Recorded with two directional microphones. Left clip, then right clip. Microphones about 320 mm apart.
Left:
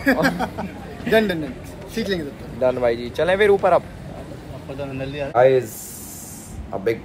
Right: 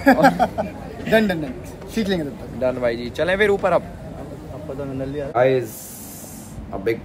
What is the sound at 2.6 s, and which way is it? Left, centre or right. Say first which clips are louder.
Speech: left 2 dB; centre.